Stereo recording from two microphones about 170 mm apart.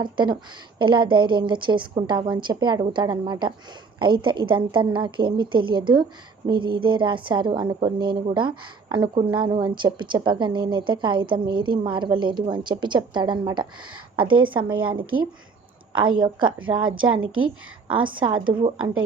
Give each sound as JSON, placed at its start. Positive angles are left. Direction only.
{"t": 0.0, "sound": "a woman's voice", "side_deg": -25}
{"t": 15.9, "sound": "a woman's voice", "side_deg": -30}